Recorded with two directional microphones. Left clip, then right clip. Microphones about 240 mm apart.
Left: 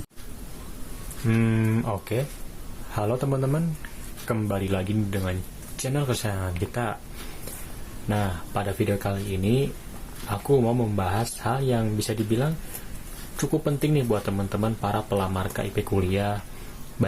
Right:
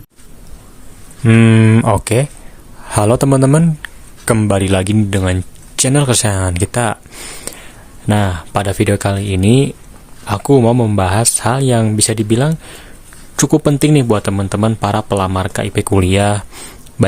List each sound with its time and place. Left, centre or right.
1.3 s speech: right
8.0 s speech: right